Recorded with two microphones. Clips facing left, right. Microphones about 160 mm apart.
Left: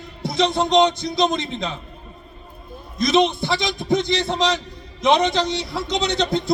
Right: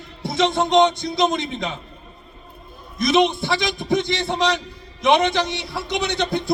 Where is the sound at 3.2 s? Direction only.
20° left (ahead or behind).